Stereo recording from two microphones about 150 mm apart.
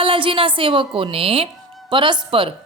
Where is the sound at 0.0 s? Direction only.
35° right (ahead or behind).